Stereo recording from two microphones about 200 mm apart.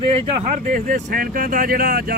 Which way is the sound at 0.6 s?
40° right (ahead or behind).